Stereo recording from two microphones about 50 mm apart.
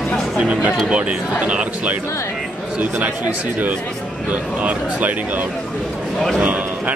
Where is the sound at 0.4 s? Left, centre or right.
Right.